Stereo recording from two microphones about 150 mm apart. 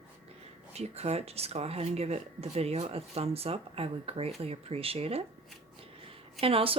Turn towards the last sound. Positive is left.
turn(degrees=-40)  # may be behind; listen again after turning